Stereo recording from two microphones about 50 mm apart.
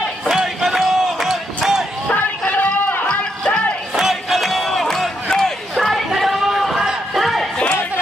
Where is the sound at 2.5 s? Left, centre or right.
Left.